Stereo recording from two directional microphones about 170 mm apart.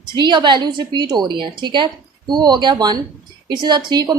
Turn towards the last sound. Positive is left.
turn(degrees=-25)  # may be behind; listen again after turning